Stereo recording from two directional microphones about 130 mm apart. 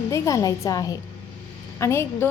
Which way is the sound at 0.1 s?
25° left (ahead or behind).